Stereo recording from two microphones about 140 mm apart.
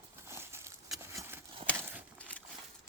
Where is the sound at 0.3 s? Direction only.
20° right (ahead or behind).